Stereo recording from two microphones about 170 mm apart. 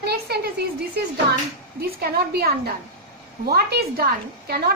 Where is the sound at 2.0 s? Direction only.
65° right (ahead or behind).